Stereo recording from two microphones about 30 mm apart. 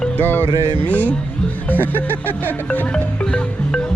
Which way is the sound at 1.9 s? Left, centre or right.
Left.